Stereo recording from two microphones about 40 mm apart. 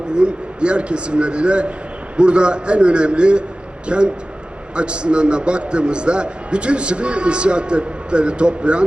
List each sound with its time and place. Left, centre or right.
0.1 s a man's voice: right